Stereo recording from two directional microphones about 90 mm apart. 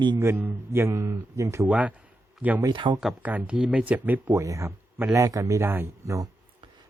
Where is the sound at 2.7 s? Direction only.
65° right (ahead or behind).